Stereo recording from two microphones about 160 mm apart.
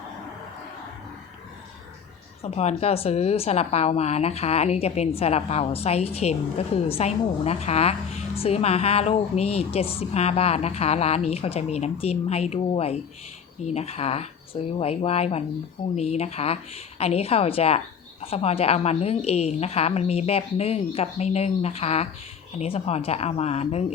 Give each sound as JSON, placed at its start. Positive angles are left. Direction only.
{"t": 2.4, "sound": "speech", "side_deg": 40}